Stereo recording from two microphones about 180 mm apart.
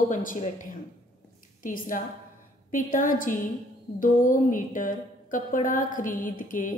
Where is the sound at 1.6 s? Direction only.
50° left (ahead or behind).